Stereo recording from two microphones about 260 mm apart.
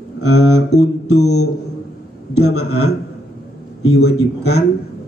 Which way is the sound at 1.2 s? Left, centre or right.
Left.